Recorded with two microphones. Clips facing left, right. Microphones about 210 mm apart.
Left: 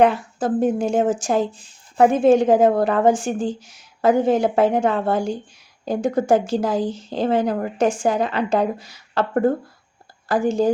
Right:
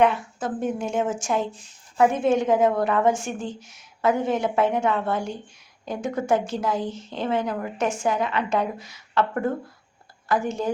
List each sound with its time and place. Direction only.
0.0 s speech: 35° left (ahead or behind)